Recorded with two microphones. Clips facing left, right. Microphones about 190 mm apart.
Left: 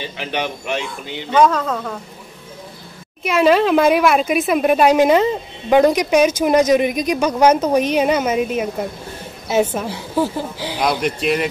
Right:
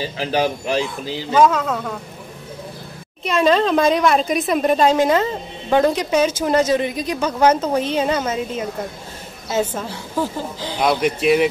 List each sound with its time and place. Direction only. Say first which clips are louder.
0.0 s speech: right 4 dB; 35° right (ahead or behind)
1.3 s speech: left 1 dB; 5° right (ahead or behind)
3.3 s a woman's voice: left 2 dB; 5° left (ahead or behind)
10.8 s speech: right 2 dB; centre (ahead or behind)